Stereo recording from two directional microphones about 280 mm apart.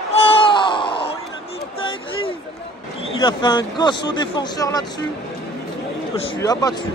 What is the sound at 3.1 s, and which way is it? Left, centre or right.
Speech, centre.